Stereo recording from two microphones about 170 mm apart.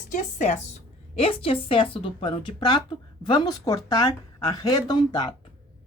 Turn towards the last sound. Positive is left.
turn(degrees=25)  # may be behind; listen again after turning